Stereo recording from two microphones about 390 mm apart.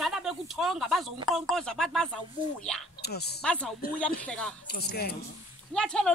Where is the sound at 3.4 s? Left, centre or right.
Centre.